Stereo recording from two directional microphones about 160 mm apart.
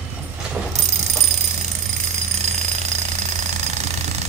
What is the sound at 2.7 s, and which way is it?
Jackhammer, 45° right (ahead or behind).